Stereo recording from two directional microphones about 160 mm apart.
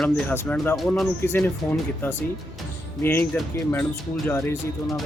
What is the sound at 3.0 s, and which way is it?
Speech, 15° left (ahead or behind).